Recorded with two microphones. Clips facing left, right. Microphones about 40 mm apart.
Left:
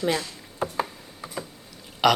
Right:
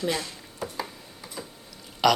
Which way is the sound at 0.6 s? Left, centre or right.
Left.